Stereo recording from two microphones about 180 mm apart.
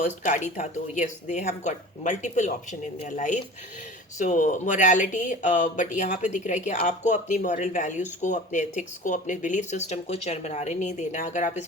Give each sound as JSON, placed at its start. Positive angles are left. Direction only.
{"t": 0.3, "sound": "speech", "side_deg": 45}